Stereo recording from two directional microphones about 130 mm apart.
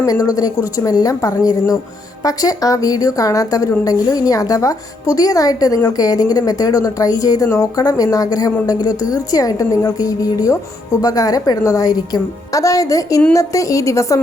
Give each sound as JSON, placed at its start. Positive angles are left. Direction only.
{"t": 0.0, "sound": "a woman's voice", "side_deg": 30}